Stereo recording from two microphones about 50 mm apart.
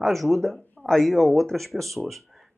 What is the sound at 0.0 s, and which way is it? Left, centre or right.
Speech, centre.